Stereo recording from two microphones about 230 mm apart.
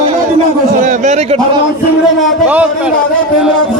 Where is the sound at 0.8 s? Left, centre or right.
Right.